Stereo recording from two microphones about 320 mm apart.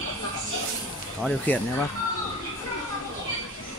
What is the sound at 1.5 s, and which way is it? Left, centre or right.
Speech, centre.